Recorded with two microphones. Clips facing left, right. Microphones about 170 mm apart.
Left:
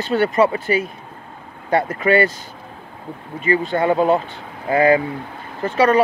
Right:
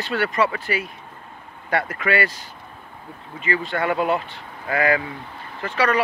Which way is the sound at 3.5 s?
25° left (ahead or behind).